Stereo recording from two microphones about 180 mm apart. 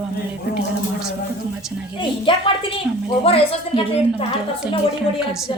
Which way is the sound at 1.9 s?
30° left (ahead or behind).